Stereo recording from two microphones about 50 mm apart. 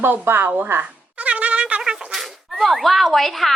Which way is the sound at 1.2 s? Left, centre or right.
Right.